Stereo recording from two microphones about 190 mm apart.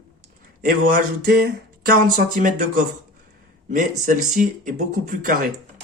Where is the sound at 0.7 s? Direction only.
50° right (ahead or behind).